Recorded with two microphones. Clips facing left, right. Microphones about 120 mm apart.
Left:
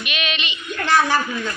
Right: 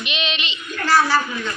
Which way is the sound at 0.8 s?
20° left (ahead or behind).